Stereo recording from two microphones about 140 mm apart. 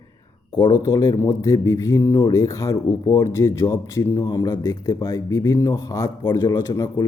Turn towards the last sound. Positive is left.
turn(degrees=20)  # may be behind; listen again after turning